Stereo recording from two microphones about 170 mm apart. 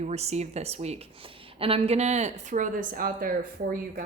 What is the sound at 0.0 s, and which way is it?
A woman's voice, 40° right (ahead or behind).